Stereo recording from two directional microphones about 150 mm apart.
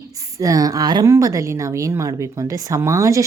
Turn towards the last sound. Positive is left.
turn(degrees=-20)  # may be behind; listen again after turning